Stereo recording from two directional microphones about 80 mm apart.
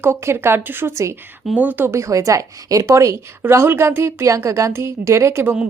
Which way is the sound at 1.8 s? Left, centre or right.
Right.